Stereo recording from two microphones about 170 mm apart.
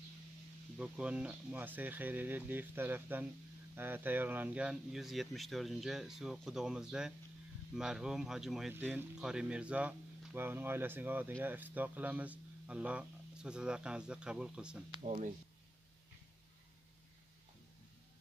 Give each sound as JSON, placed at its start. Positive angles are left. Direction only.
{"t": 0.7, "sound": "speech", "side_deg": -5}
{"t": 15.0, "sound": "speech", "side_deg": -45}